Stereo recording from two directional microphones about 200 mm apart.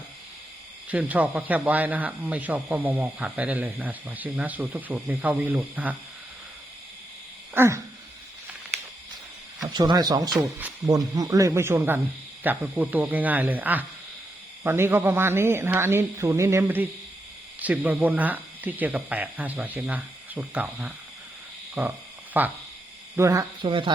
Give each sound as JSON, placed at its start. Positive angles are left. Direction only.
{"t": 0.9, "sound": "a man's voice", "side_deg": -10}
{"t": 7.5, "sound": "a sound", "side_deg": -10}
{"t": 9.6, "sound": "a man's voice", "side_deg": -20}